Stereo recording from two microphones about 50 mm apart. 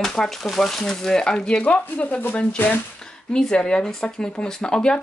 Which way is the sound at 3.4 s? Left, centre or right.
Centre.